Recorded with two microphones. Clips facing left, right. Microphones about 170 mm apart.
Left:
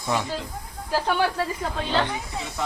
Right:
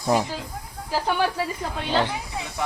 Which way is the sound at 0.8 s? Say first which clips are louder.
Even; 5° right (ahead or behind).